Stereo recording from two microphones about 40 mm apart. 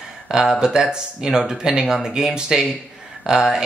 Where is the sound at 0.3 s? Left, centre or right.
Centre.